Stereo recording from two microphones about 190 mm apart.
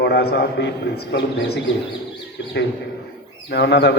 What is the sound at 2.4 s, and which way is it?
A man's voice, 70° left (ahead or behind).